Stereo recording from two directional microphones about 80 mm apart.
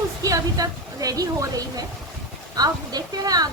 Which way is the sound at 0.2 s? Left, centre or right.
Right.